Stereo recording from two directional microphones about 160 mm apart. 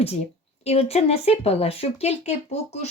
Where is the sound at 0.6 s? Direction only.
40° left (ahead or behind).